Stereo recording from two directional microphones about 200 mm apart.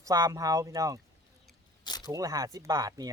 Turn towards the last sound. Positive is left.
turn(degrees=-20)  # may be behind; listen again after turning